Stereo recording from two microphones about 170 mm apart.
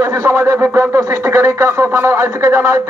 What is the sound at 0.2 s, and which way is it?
Speech, 15° right (ahead or behind).